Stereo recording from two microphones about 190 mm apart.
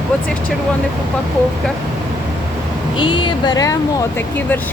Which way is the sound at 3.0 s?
25° left (ahead or behind).